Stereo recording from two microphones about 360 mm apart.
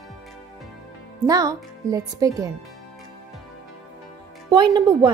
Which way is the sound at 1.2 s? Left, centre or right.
Centre.